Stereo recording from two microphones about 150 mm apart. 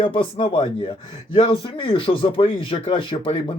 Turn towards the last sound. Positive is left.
turn(degrees=35)  # may be behind; listen again after turning